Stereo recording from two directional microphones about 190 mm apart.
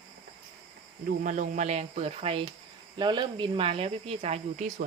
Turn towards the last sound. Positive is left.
turn(degrees=-35)  # may be behind; listen again after turning